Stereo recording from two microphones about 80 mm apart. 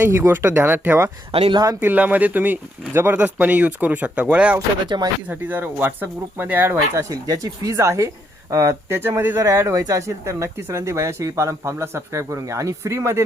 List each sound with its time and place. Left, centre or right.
0.0 s speech: right
4.9 s speech: right
5.3 s speech: right
6.9 s speech: right
7.7 s speech: right